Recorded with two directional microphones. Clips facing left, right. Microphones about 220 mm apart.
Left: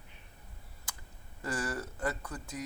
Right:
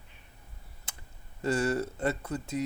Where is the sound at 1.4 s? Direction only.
25° right (ahead or behind).